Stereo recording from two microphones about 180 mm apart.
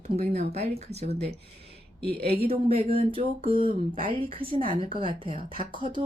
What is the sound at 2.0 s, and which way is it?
Speech, 60° right (ahead or behind).